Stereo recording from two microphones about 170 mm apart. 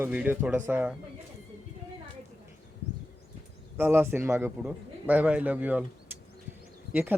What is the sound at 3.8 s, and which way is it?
Speech, 10° right (ahead or behind).